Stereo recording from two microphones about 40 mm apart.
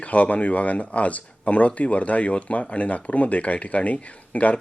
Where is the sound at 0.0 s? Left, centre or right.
Left.